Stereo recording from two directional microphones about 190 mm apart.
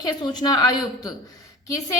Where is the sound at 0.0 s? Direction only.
20° left (ahead or behind).